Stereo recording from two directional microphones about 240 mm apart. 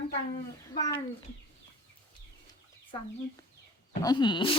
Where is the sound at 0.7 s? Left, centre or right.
Centre.